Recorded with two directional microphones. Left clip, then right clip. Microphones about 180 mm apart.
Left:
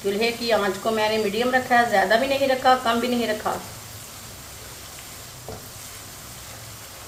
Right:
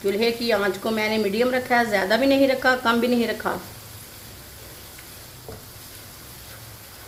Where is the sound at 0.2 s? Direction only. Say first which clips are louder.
Left 1 dB; 55° right (ahead or behind).